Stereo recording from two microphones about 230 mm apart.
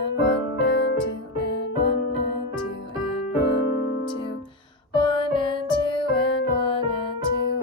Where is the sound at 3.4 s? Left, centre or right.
Left.